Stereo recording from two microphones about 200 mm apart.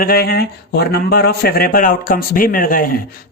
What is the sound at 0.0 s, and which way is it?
Speech, 50° left (ahead or behind).